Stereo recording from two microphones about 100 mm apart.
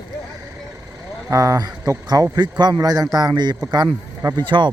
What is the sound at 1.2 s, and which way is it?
Speech, 35° right (ahead or behind).